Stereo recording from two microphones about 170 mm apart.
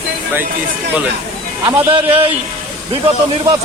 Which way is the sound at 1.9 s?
35° right (ahead or behind).